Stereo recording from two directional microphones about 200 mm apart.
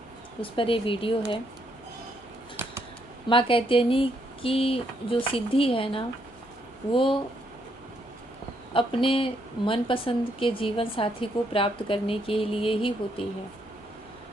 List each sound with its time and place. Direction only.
0.5 s speech: 25° left (ahead or behind)
3.2 s speech: 25° left (ahead or behind)
8.7 s speech: 25° left (ahead or behind)